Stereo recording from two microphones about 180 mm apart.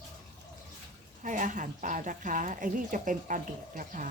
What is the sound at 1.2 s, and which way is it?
A woman's voice, 45° right (ahead or behind).